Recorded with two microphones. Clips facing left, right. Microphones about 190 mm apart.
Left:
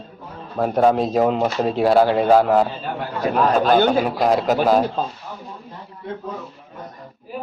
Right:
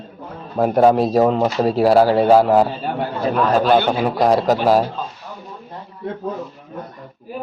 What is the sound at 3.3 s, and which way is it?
Speech, 45° left (ahead or behind).